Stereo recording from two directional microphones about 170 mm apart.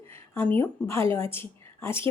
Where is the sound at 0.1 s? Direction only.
15° left (ahead or behind).